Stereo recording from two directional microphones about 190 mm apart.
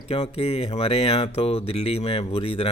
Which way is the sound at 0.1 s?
30° left (ahead or behind).